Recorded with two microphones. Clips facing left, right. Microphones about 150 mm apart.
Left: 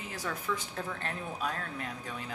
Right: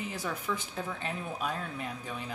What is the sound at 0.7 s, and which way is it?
Speech, 10° right (ahead or behind).